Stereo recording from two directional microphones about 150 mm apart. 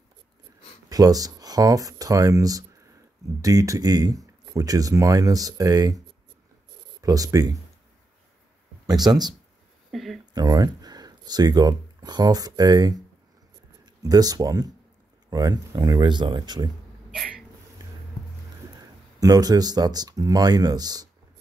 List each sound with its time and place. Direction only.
0.8 s speech: 25° right (ahead or behind)
8.8 s speech: 25° right (ahead or behind)
9.8 s speech: centre (ahead or behind)
10.3 s speech: 25° right (ahead or behind)
14.0 s speech: 25° right (ahead or behind)
17.1 s a sound: 5° right (ahead or behind)
18.8 s speech: 25° right (ahead or behind)